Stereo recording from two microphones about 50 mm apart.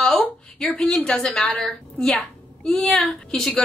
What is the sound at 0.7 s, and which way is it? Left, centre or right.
Speech, centre.